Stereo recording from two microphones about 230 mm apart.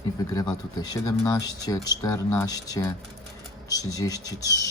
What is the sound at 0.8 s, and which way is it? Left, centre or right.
Speech, centre.